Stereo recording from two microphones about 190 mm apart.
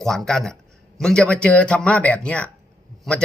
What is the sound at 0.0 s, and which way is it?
Speech, centre (ahead or behind).